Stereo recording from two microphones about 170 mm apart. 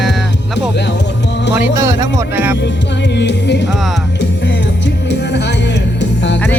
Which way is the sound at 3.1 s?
90° left.